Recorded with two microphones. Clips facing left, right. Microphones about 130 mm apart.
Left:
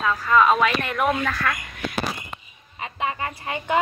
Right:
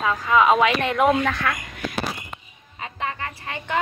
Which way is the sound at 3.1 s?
20° left (ahead or behind).